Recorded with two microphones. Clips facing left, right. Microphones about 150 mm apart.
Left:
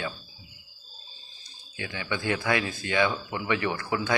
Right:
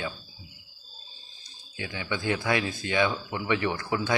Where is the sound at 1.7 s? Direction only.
15° right (ahead or behind).